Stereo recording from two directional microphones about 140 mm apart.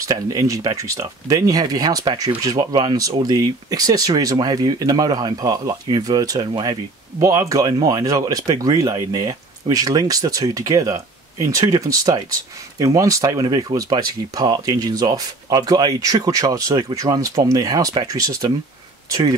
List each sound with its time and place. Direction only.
0.0 s speech: 25° right (ahead or behind)